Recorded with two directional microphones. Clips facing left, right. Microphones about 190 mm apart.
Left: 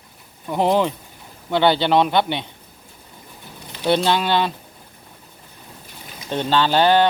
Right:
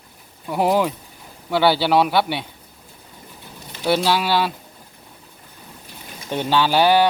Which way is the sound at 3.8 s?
5° right (ahead or behind).